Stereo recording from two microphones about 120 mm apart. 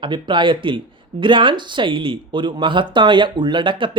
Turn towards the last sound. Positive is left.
turn(degrees=-45)  # may be behind; listen again after turning